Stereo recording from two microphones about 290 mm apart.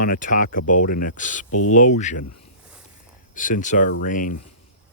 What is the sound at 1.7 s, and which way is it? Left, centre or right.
Speech, left.